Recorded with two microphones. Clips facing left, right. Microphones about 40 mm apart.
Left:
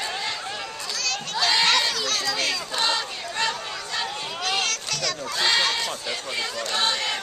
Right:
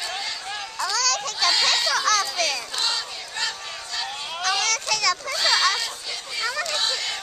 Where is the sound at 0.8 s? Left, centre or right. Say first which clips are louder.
Right 8 dB; right.